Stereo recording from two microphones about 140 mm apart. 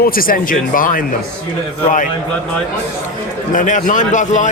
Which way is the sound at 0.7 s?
80° left.